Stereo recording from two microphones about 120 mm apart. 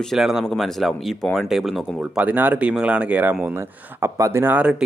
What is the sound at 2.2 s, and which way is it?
Speech, 15° right (ahead or behind).